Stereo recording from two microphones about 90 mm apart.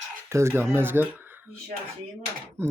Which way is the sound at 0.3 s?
30° right (ahead or behind).